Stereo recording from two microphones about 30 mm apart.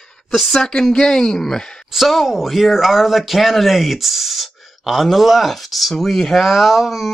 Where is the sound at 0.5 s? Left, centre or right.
Left.